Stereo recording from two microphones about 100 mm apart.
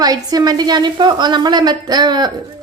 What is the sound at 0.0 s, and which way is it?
A woman's voice, 40° right (ahead or behind).